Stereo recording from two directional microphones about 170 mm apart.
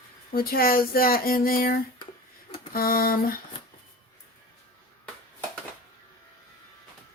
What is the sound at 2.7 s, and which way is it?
Speech, 60° left (ahead or behind).